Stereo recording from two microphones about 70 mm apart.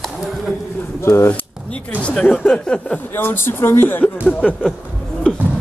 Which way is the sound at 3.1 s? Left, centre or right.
Left.